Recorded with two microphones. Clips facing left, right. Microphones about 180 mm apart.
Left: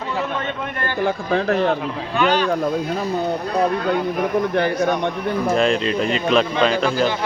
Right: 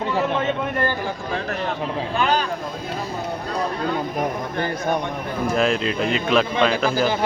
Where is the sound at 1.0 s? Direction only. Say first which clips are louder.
Left 7 dB; 60° left (ahead or behind).